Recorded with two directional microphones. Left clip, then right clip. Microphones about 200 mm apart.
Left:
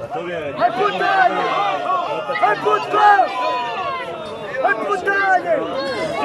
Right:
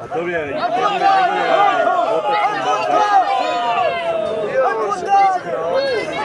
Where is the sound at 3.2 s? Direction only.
50° right (ahead or behind).